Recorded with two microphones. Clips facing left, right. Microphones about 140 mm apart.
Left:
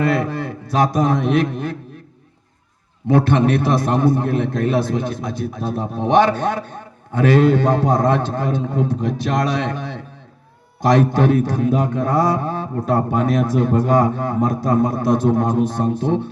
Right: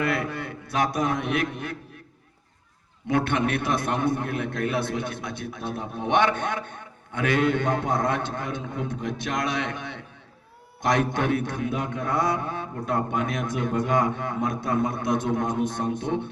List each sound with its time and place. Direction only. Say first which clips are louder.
0.0 s a man's voice: left 7 dB; 30° left (ahead or behind)
3.2 s a man's voice: left 8 dB; 30° left (ahead or behind)